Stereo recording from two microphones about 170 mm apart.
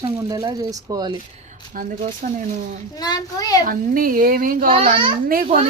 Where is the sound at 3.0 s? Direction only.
20° left (ahead or behind).